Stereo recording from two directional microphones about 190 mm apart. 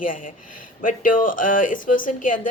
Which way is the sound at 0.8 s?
45° left (ahead or behind).